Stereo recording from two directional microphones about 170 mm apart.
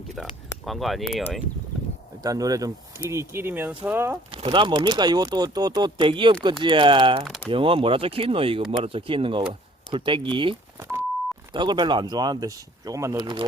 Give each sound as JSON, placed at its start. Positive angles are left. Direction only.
{"t": 0.2, "sound": "speech", "side_deg": 0}
{"t": 2.2, "sound": "speech", "side_deg": -20}
{"t": 4.3, "sound": "speech", "side_deg": -30}